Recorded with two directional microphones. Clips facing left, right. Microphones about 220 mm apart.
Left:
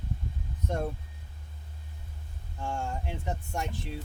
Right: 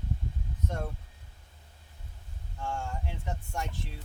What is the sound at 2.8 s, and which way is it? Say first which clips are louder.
Speech: left 3 dB; 20° left (ahead or behind).